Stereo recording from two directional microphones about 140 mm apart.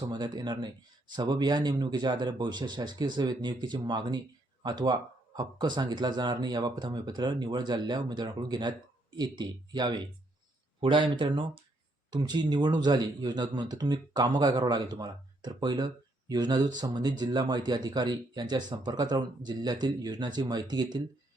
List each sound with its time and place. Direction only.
0.0 s speech: 30° right (ahead or behind)